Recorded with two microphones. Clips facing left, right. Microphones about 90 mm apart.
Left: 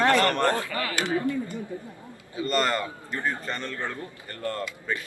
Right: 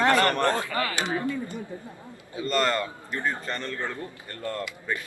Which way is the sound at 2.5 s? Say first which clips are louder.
Right 1 dB; 10° left (ahead or behind).